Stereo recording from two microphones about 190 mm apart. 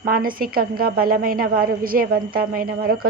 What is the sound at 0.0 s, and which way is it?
A woman's voice, 50° right (ahead or behind).